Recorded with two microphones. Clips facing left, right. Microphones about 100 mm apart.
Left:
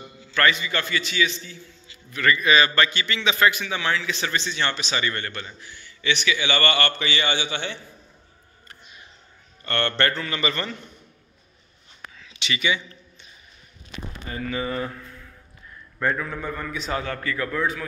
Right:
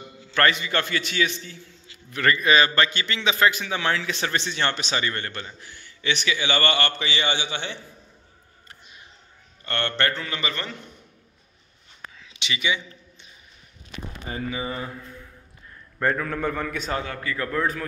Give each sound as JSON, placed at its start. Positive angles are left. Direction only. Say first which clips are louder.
{"t": 0.4, "sound": "a man's voice", "louder": "even", "side_deg": -50}
{"t": 2.2, "sound": "a man's voice", "louder": "even", "side_deg": -35}
{"t": 4.9, "sound": "a man's voice", "louder": "even", "side_deg": -30}
{"t": 5.6, "sound": "a man's voice", "louder": "left 1 dB", "side_deg": -45}
{"t": 9.7, "sound": "a man's voice", "louder": "left 2 dB", "side_deg": -10}
{"t": 12.2, "sound": "a sound", "louder": "left 2 dB", "side_deg": -15}
{"t": 14.5, "sound": "a man's voice", "louder": "left 6 dB", "side_deg": -20}
{"t": 16.0, "sound": "a man's voice", "louder": "right 1 dB", "side_deg": -50}
{"t": 16.3, "sound": "a man's voice", "louder": "right 4 dB", "side_deg": -70}
{"t": 17.0, "sound": "a man's voice", "louder": "left 2 dB", "side_deg": -15}
{"t": 17.4, "sound": "a man's voice", "louder": "right 2 dB", "side_deg": -40}